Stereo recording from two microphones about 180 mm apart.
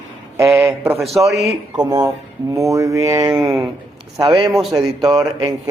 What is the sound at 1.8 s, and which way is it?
Speech, 20° right (ahead or behind).